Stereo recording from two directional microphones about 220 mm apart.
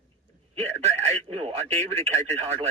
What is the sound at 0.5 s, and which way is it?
Speech, 30° right (ahead or behind).